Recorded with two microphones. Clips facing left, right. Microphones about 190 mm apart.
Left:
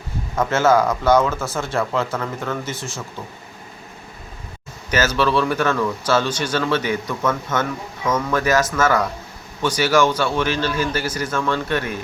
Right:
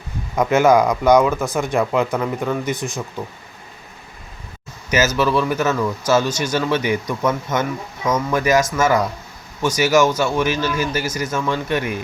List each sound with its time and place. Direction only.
0.3 s speech: 15° right (ahead or behind)
4.9 s speech: 10° right (ahead or behind)